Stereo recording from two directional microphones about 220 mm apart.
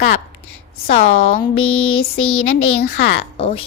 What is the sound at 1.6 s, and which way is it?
A woman's voice, 70° left (ahead or behind).